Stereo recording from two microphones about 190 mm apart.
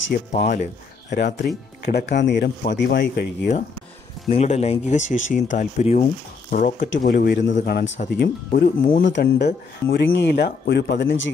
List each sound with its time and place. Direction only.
0.1 s speech: 55° left (ahead or behind)
4.3 s speech: 35° left (ahead or behind); by 8.0 s 65° left (ahead or behind)
8.2 s speech: 45° left (ahead or behind)
9.0 s speech: 65° left (ahead or behind)